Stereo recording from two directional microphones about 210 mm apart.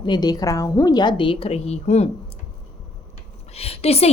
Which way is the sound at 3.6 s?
30° left (ahead or behind).